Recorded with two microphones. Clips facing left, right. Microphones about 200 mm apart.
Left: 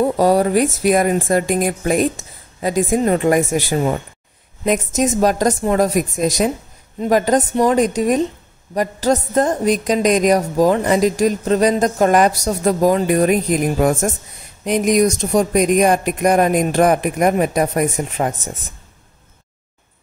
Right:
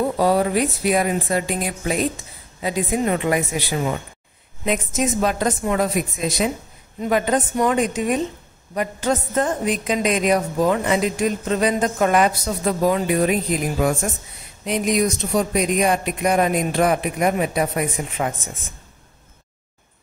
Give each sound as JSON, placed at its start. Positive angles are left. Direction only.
{"t": 0.2, "sound": "a woman's voice", "side_deg": 40}